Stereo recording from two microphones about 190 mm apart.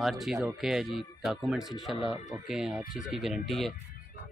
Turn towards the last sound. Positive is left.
turn(degrees=0)  # may be behind; listen again after turning